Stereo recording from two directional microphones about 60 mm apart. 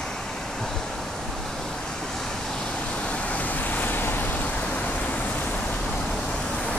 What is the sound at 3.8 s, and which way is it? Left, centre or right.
Vehicle, left.